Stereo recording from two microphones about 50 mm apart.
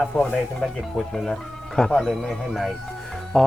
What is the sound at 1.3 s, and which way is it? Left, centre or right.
Speech, centre.